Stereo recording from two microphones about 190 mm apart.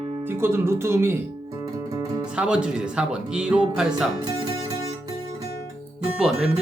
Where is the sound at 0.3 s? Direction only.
15° right (ahead or behind).